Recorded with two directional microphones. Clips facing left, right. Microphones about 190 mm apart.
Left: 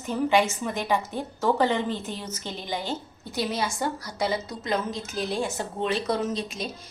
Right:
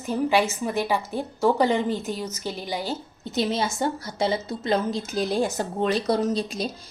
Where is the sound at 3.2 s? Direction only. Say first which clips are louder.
Right 4 dB; 25° right (ahead or behind).